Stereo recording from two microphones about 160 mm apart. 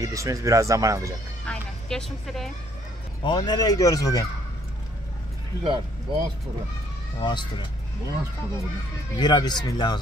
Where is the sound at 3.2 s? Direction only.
30° left (ahead or behind).